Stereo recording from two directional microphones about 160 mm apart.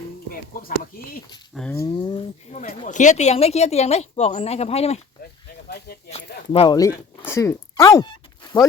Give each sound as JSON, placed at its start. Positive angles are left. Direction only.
{"t": 0.3, "sound": "speech", "side_deg": 65}
{"t": 1.7, "sound": "speech", "side_deg": 25}
{"t": 2.6, "sound": "speech", "side_deg": 50}
{"t": 5.6, "sound": "speech", "side_deg": 75}
{"t": 6.1, "sound": "speech", "side_deg": 40}
{"t": 6.7, "sound": "speech", "side_deg": 20}